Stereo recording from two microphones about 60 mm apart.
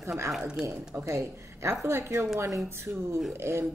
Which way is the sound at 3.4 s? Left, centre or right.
Right.